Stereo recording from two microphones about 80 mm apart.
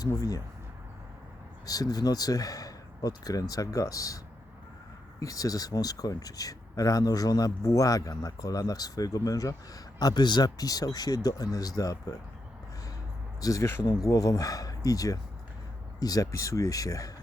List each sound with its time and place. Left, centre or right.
0.0 s speech: left
1.6 s speech: left
5.2 s speech: left
13.4 s speech: left